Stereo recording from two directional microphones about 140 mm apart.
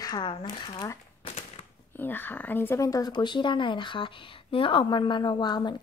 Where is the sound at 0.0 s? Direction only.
30° left (ahead or behind).